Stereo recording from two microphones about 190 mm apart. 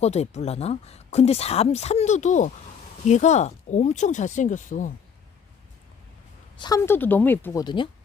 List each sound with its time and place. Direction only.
0.0 s speech: 35° left (ahead or behind)
6.6 s speech: 20° left (ahead or behind)
7.6 s speech: 25° left (ahead or behind)